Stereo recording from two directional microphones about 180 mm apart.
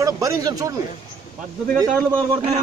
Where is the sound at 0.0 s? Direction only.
20° right (ahead or behind).